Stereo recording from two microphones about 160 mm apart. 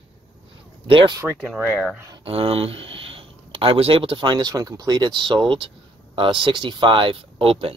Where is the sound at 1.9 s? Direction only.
25° right (ahead or behind).